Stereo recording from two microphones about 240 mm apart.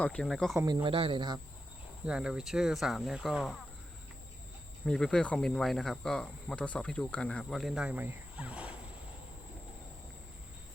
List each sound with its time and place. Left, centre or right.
0.0 s speech: centre
0.5 s speech: centre
2.0 s speech: centre
4.9 s speech: centre